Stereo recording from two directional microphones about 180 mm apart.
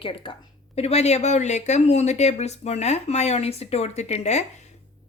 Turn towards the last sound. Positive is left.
turn(degrees=40)  # may be behind; listen again after turning